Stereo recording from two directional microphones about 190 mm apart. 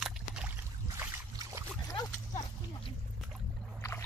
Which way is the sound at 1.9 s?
20° left (ahead or behind).